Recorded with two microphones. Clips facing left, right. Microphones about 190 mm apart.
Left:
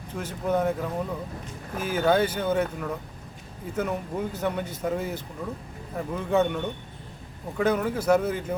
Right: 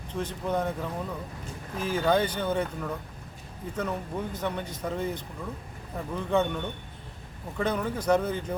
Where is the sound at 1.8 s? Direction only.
5° left (ahead or behind).